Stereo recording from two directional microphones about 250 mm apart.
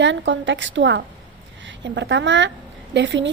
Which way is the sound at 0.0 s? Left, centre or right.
Right.